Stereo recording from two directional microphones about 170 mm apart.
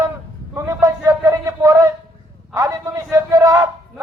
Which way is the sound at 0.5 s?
15° right (ahead or behind).